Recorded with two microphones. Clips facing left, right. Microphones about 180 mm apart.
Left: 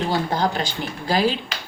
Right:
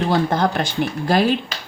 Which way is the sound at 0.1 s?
55° right (ahead or behind).